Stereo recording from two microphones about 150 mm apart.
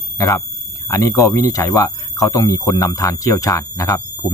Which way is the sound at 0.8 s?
25° left (ahead or behind).